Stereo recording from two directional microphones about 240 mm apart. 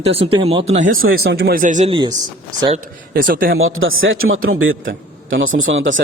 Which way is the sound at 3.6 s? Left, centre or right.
Right.